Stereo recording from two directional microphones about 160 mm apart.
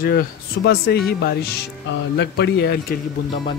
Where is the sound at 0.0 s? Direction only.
70° left (ahead or behind).